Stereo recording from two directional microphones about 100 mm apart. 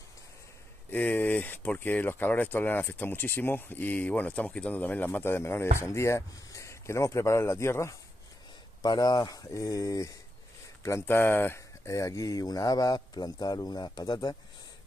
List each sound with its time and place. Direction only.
0.9 s speech: 20° left (ahead or behind)
8.8 s speech: 40° left (ahead or behind)